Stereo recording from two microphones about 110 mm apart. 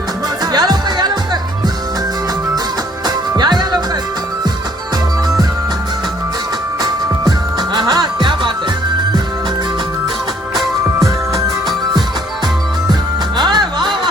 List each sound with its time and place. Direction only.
0.5 s music: 40° right (ahead or behind)
3.3 s music: 40° right (ahead or behind)
6.8 s music: 35° right (ahead or behind)
11.0 s music: 30° right (ahead or behind)
12.9 s music: 40° right (ahead or behind)